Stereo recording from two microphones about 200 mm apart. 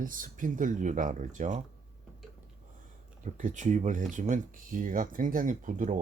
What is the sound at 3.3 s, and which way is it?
Speech, 40° right (ahead or behind).